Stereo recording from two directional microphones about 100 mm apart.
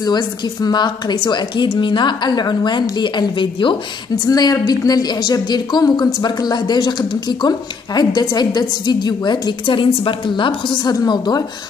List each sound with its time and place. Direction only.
0.0 s speech: 40° left (ahead or behind)
4.3 s speech: 40° left (ahead or behind)